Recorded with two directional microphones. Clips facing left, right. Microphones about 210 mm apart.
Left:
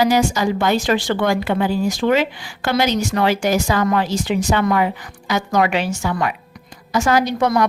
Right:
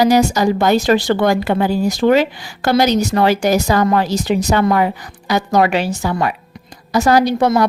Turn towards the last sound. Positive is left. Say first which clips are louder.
# right 4 dB
turn(degrees=-30)  # may be behind; listen again after turning